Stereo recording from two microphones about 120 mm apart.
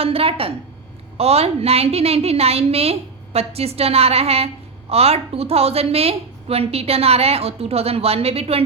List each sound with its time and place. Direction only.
0.0 s a woman's voice: 50° right (ahead or behind)